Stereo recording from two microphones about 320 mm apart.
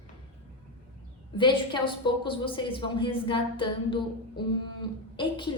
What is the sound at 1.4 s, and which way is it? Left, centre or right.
A woman's voice, centre.